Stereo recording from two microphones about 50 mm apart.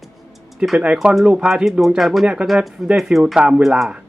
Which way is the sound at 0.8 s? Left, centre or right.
Centre.